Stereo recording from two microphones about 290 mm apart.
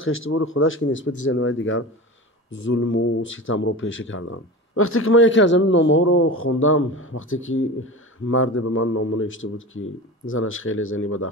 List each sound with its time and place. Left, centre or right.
0.0 s speech: left